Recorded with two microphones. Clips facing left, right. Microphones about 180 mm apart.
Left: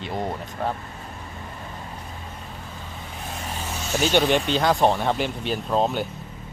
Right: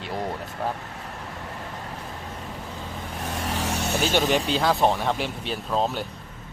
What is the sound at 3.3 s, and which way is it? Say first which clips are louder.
Vehicle: right 5 dB; 85° right.